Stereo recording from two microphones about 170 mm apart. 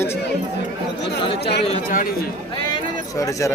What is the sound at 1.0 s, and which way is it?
Speech, 75° left (ahead or behind).